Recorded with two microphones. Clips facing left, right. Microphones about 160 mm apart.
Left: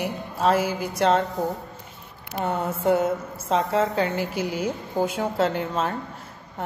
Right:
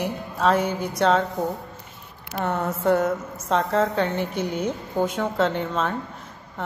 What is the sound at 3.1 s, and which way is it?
A woman's voice, centre (ahead or behind).